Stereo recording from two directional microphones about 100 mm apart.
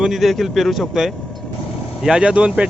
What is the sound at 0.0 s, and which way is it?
Speech, centre (ahead or behind).